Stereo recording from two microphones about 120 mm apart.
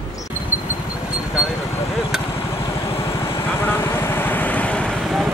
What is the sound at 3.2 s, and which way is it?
Vehicle, 20° left (ahead or behind).